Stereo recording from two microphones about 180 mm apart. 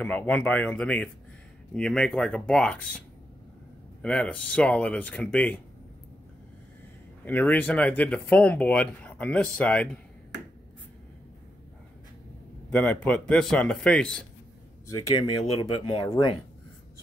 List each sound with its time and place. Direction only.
0.0 s a man's voice: 5° left (ahead or behind)
4.0 s speech: 5° left (ahead or behind)
7.2 s speech: 10° left (ahead or behind)
12.6 s a man's voice: 5° left (ahead or behind)
14.9 s speech: 20° left (ahead or behind)